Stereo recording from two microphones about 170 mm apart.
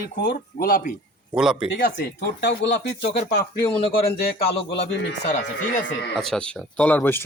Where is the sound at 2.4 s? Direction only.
90° left.